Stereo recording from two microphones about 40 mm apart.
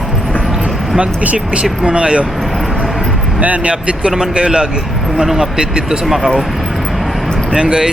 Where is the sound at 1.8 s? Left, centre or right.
Right.